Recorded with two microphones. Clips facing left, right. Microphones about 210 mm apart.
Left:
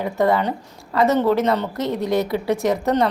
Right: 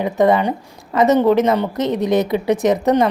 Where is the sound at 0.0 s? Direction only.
20° right (ahead or behind).